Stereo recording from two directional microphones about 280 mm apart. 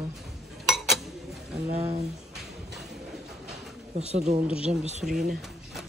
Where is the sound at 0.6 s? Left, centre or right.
Centre.